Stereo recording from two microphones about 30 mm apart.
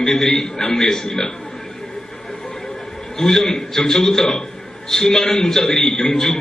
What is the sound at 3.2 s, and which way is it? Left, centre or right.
A man's voice, centre.